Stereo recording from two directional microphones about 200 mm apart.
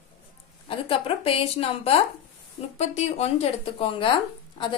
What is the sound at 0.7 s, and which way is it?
A woman's voice, 25° left (ahead or behind).